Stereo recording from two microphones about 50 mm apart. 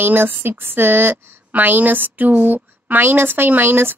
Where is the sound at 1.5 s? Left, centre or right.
Right.